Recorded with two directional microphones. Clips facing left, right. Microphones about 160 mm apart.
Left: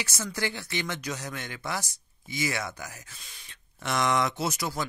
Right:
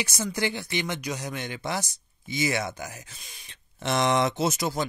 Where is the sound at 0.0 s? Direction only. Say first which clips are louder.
Right 4 dB; 15° right (ahead or behind).